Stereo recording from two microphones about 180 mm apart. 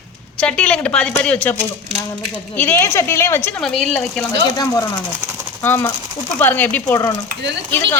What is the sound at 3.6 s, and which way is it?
Speech, centre (ahead or behind).